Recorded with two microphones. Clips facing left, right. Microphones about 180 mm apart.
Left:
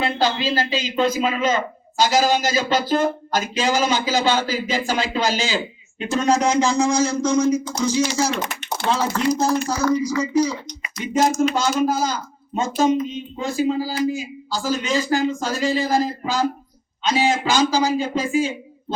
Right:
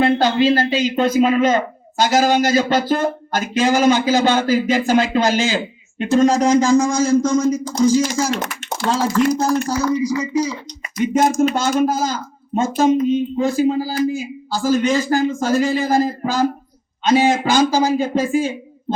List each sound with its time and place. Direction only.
0.0 s speech: 55° right (ahead or behind)
10.8 s speech: 50° right (ahead or behind)